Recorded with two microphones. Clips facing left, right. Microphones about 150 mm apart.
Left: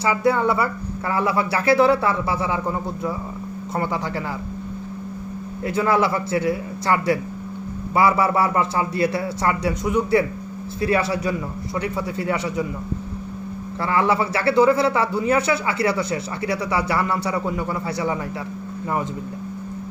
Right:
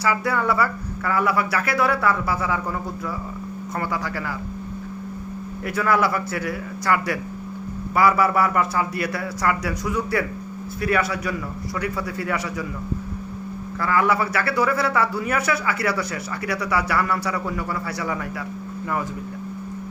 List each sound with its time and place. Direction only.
0.0 s speech: 25° left (ahead or behind)
5.6 s speech: 25° left (ahead or behind)
13.8 s speech: 25° left (ahead or behind)